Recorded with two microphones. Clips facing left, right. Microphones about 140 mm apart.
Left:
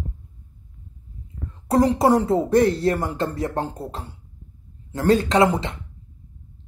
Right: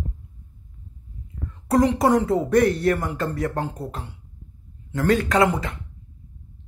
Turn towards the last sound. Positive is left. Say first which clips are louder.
# left 2 dB
turn(degrees=25)  # may be behind; listen again after turning